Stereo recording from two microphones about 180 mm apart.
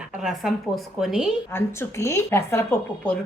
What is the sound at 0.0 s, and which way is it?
A woman's voice, 5° right (ahead or behind).